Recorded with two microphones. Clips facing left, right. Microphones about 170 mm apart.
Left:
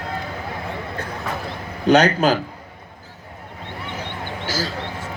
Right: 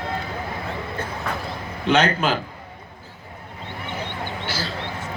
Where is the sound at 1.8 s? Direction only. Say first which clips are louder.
Left 4 dB; 40° left (ahead or behind).